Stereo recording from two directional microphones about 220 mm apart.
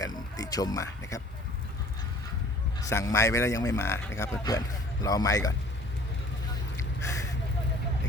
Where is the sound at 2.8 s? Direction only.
15° left (ahead or behind).